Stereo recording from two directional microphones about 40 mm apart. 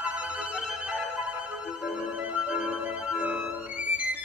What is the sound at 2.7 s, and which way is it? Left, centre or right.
Music, right.